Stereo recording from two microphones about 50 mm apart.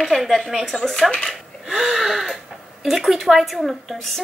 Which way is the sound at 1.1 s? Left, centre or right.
Centre.